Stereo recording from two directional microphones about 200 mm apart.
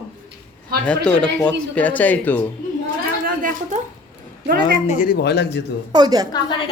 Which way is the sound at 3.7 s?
35° right (ahead or behind).